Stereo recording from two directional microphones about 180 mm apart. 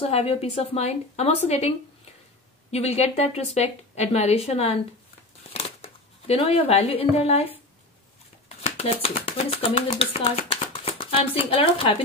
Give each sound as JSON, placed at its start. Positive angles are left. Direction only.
{"t": 0.0, "sound": "a woman's voice", "side_deg": 35}
{"t": 2.7, "sound": "a woman's voice", "side_deg": 35}
{"t": 8.6, "sound": "speech", "side_deg": 40}